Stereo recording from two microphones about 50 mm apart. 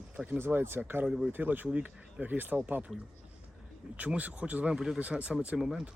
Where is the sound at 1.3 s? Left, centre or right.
Right.